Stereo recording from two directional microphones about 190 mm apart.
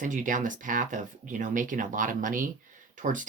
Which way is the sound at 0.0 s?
40° right (ahead or behind).